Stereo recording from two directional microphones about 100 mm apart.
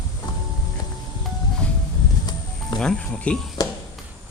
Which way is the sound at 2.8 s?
5° left (ahead or behind).